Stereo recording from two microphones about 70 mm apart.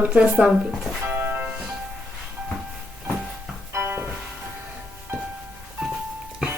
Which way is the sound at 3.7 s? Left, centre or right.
Right.